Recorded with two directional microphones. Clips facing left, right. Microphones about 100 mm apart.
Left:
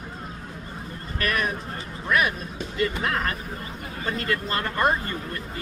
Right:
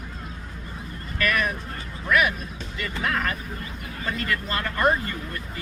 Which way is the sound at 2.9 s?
25° left (ahead or behind).